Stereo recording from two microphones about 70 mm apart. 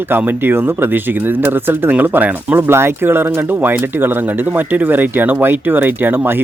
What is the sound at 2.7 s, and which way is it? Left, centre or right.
Speech, right.